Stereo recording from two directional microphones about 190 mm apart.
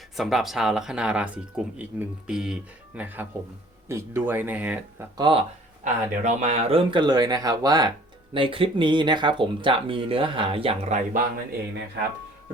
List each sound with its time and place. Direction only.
0.2 s speech: centre (ahead or behind)
5.1 s speech: 25° right (ahead or behind)
5.8 s speech: 35° right (ahead or behind)